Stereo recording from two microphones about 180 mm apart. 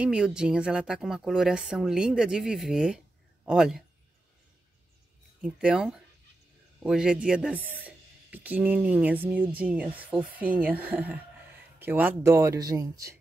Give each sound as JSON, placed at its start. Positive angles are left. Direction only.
{"t": 0.0, "sound": "a woman's voice", "side_deg": -5}
{"t": 5.4, "sound": "a woman's voice", "side_deg": -5}